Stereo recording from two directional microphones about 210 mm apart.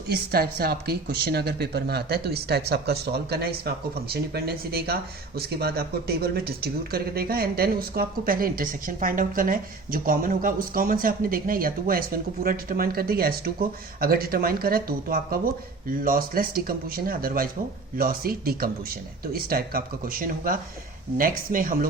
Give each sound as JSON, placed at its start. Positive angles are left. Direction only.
{"t": 0.1, "sound": "speech", "side_deg": -50}